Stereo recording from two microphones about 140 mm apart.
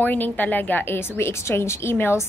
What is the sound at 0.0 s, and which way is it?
A woman's voice, 15° left (ahead or behind).